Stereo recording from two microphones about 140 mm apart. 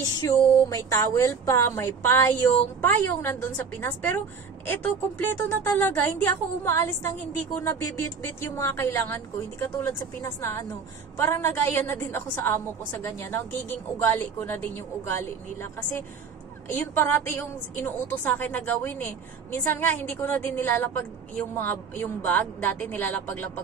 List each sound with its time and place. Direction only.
0.0 s a woman's voice: 25° left (ahead or behind)